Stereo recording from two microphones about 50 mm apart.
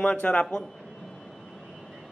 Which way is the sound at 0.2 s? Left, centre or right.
Left.